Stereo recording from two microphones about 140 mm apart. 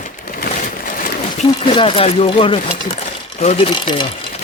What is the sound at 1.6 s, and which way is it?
Speech, 35° left (ahead or behind).